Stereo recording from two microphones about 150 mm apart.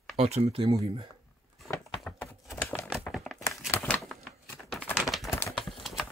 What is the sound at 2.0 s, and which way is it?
Typing, 15° left (ahead or behind).